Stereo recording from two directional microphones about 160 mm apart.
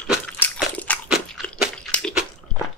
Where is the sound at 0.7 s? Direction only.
10° left (ahead or behind).